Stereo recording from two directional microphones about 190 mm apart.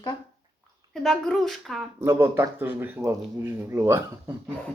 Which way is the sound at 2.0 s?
15° right (ahead or behind).